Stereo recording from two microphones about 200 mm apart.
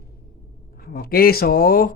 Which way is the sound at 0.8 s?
50° left (ahead or behind).